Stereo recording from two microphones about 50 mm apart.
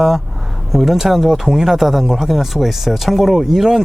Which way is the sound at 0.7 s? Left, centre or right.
Centre.